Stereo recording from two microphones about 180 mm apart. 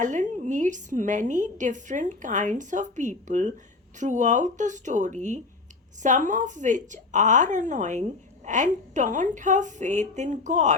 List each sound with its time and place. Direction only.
0.0 s a woman's voice: 45° right (ahead or behind)